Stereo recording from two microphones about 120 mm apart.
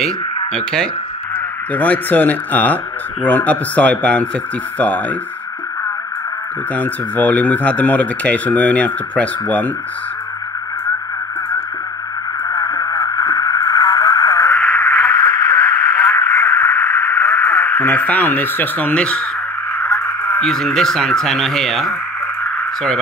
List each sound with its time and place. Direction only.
1.7 s speech: 15° left (ahead or behind)
6.7 s speech: 15° left (ahead or behind)
12.4 s radio: 30° left (ahead or behind); by 19.2 s 10° left (ahead or behind)
20.3 s speech: 5° left (ahead or behind)